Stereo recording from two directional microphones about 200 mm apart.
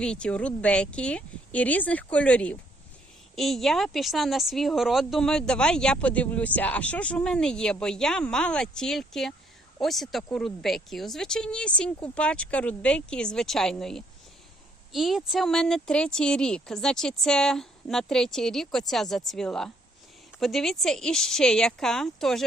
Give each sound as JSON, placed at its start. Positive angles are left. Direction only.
{"t": 0.0, "sound": "speech", "side_deg": 5}